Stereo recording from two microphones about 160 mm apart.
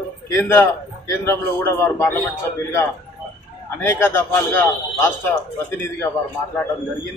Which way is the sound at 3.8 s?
15° left (ahead or behind).